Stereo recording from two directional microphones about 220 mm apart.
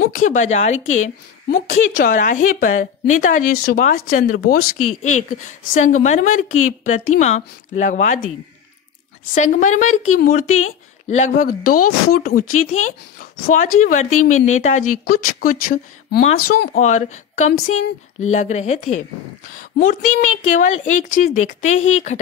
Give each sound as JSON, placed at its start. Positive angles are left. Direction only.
{"t": 0.0, "sound": "speech", "side_deg": 40}
{"t": 9.3, "sound": "speech", "side_deg": 35}
{"t": 11.7, "sound": "a woman's voice", "side_deg": 90}
{"t": 12.3, "sound": "speech", "side_deg": 40}